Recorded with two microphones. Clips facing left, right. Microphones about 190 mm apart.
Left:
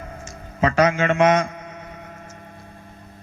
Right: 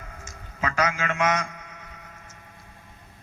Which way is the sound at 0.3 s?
30° left (ahead or behind).